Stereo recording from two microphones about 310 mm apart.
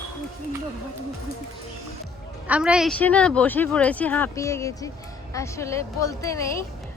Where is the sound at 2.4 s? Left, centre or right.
Centre.